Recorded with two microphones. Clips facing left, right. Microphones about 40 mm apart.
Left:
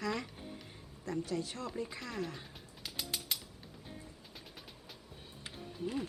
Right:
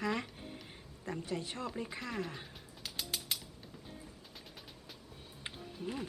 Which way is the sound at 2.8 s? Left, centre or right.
Centre.